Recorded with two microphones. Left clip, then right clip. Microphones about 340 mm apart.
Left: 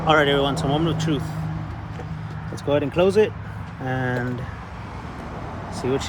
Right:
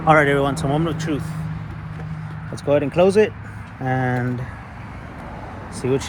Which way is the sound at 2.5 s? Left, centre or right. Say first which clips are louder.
Right 3 dB; right.